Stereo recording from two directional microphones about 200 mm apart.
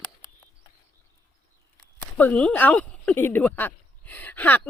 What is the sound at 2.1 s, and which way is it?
Speech, 10° left (ahead or behind).